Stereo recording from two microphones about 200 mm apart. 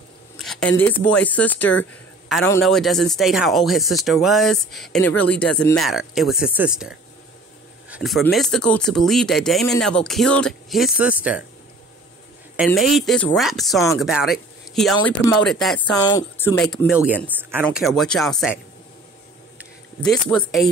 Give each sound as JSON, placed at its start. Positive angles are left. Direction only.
{"t": 0.4, "sound": "speech", "side_deg": 5}
{"t": 12.5, "sound": "speech", "side_deg": 0}
{"t": 15.9, "sound": "speech", "side_deg": 20}
{"t": 16.9, "sound": "speech", "side_deg": -5}
{"t": 17.6, "sound": "speech", "side_deg": 0}
{"t": 20.0, "sound": "speech", "side_deg": 5}